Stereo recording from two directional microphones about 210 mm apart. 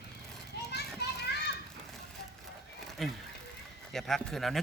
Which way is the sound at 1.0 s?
50° left (ahead or behind).